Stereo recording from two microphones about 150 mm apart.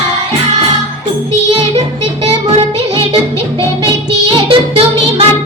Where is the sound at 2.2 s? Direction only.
40° right (ahead or behind).